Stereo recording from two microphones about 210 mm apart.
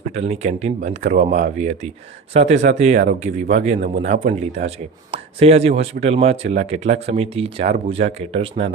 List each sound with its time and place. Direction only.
0.1 s speech: 30° right (ahead or behind)